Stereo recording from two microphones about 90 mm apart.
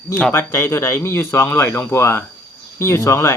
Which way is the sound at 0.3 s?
30° left (ahead or behind).